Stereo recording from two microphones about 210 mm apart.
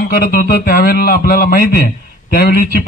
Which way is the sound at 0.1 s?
45° left (ahead or behind).